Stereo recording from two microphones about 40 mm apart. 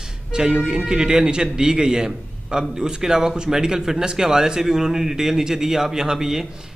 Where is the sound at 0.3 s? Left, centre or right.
Centre.